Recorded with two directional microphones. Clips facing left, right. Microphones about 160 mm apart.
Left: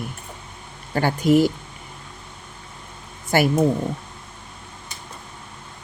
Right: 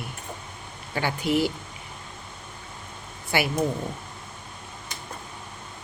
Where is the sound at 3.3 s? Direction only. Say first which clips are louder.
Left 7 dB; 45° left (ahead or behind).